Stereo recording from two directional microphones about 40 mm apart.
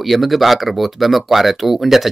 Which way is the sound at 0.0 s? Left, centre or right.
Centre.